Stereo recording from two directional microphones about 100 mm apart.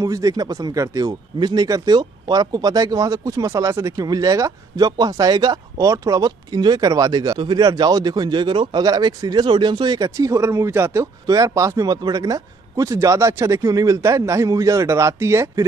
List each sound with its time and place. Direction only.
0.0 s speech: 35° right (ahead or behind)